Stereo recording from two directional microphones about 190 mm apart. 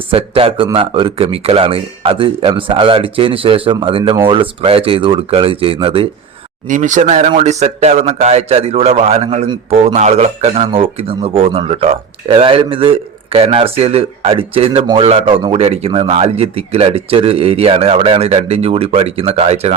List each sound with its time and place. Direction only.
0.1 s speech: 30° right (ahead or behind)
6.7 s speech: 40° right (ahead or behind)